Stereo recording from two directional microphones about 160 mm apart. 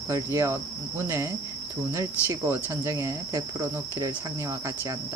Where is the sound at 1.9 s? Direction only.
15° right (ahead or behind).